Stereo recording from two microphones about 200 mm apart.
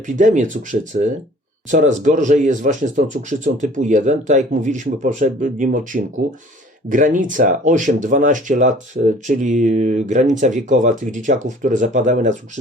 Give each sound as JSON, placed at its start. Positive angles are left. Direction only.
{"t": 0.2, "sound": "speech", "side_deg": -40}